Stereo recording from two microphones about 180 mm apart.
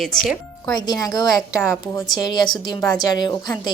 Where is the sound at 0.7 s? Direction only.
20° left (ahead or behind).